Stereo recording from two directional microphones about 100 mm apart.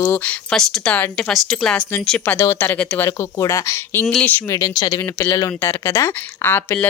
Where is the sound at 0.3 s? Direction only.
5° left (ahead or behind).